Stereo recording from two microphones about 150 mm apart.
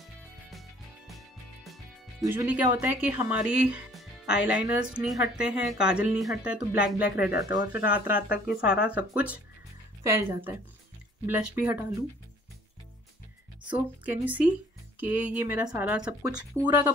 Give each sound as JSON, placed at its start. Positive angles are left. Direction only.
{"t": 1.1, "sound": "music", "side_deg": 0}
{"t": 2.2, "sound": "speech", "side_deg": -10}
{"t": 7.2, "sound": "speech", "side_deg": -25}
{"t": 7.7, "sound": "speech", "side_deg": -10}
{"t": 13.7, "sound": "speech", "side_deg": -10}